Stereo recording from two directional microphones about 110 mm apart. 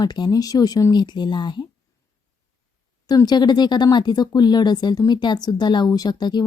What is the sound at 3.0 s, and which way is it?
Speech, 35° left (ahead or behind).